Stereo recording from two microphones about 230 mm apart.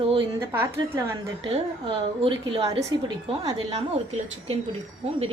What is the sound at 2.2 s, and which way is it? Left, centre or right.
A woman's voice, right.